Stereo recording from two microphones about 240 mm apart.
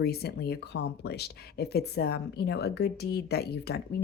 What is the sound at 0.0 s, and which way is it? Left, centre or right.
Speech, left.